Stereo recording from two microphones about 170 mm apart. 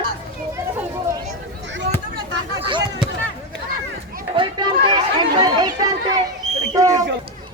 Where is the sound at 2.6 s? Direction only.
25° right (ahead or behind).